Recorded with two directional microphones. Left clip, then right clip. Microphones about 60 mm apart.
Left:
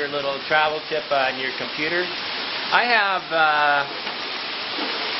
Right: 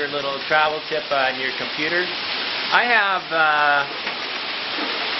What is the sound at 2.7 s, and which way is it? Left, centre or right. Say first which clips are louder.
Speech: right 1 dB; centre.